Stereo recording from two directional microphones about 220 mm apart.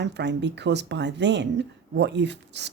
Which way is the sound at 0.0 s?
50° right (ahead or behind).